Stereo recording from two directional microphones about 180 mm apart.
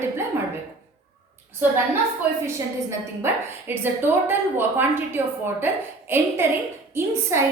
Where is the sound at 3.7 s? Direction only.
10° right (ahead or behind).